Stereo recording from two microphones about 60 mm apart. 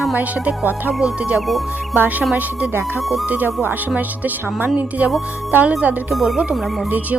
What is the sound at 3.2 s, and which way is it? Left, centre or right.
Speech, right.